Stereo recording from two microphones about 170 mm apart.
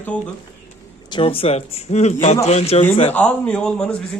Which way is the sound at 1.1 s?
35° left (ahead or behind).